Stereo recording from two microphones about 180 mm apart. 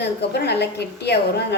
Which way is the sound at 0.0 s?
70° left (ahead or behind).